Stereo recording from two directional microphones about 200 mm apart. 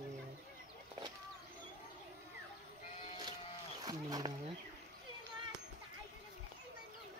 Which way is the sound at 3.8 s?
20° right (ahead or behind).